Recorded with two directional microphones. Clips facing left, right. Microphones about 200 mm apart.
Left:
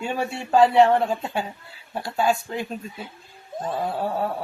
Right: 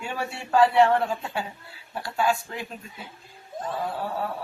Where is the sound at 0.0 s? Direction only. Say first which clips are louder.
Left 5 dB; 25° left (ahead or behind).